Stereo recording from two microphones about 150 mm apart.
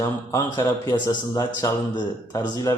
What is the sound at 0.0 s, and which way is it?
A man's voice, 20° left (ahead or behind).